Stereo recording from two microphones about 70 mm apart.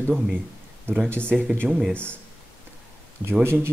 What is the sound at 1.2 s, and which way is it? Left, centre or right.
Speech, right.